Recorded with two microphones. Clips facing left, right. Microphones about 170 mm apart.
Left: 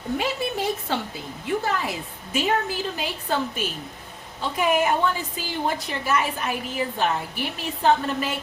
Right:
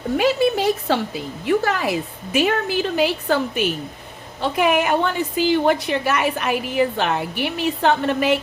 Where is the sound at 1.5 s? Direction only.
80° right.